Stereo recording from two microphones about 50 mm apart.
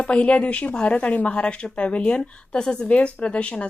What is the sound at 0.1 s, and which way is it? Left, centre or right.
A woman's voice, left.